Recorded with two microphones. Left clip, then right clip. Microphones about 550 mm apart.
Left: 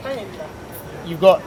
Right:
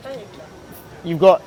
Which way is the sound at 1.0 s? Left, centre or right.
Right.